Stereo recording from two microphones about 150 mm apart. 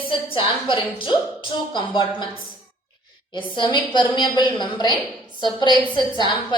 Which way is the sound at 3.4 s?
35° left (ahead or behind).